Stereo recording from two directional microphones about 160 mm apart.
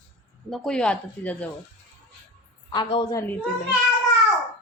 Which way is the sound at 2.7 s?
30° left (ahead or behind).